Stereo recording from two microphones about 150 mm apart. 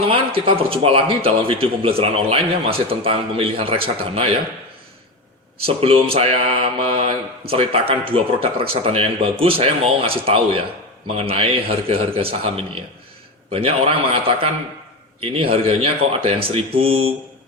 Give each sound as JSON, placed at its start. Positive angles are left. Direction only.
{"t": 0.3, "sound": "mantra", "side_deg": -35}
{"t": 5.6, "sound": "mantra", "side_deg": -40}